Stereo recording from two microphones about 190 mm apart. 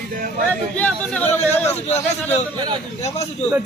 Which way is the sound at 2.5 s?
25° right (ahead or behind).